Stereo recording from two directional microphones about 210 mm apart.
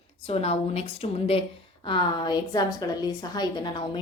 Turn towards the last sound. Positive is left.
turn(degrees=20)  # may be behind; listen again after turning